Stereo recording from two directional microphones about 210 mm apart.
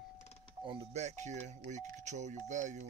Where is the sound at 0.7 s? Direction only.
30° right (ahead or behind).